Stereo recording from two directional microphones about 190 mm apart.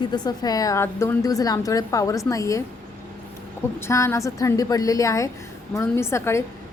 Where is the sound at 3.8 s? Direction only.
15° left (ahead or behind).